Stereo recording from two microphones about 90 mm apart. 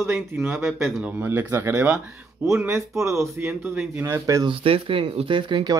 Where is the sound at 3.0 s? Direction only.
35° right (ahead or behind).